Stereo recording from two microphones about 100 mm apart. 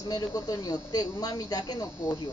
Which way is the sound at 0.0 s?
40° left (ahead or behind).